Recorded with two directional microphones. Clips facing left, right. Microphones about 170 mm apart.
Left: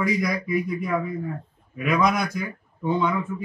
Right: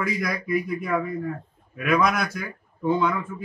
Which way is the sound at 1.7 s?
Centre (ahead or behind).